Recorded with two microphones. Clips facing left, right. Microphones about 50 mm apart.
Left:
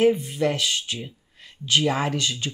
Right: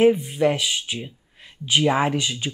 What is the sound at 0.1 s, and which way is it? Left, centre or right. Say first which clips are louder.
Speech: right 3 dB; centre.